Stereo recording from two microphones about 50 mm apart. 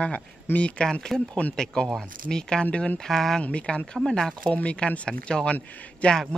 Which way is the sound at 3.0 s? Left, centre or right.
Centre.